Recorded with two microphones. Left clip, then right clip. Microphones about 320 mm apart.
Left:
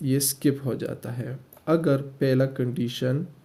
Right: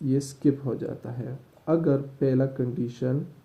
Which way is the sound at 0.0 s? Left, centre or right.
Left.